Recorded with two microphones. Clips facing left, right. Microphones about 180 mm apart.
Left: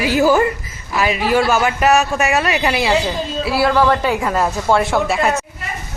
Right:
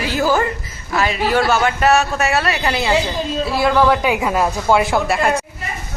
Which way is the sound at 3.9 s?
5° right (ahead or behind).